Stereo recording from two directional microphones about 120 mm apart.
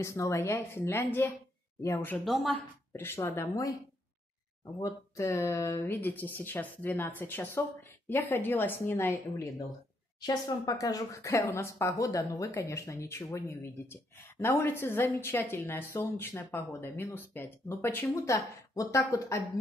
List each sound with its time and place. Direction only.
0.0 s speech: 25° left (ahead or behind)
2.2 s speech: centre (ahead or behind)
2.9 s speech: 20° left (ahead or behind)
4.7 s speech: 25° left (ahead or behind)